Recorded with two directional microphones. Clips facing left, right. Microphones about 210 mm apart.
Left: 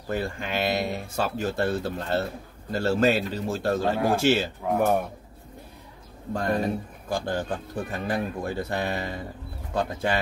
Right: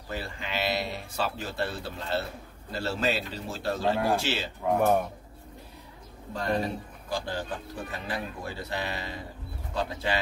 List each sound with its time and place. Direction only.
0.1 s speech: 50° left (ahead or behind)
4.6 s speech: 5° left (ahead or behind)
6.3 s speech: 50° left (ahead or behind)